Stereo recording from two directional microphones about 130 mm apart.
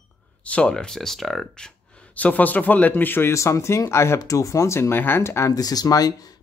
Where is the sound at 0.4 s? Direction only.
10° left (ahead or behind).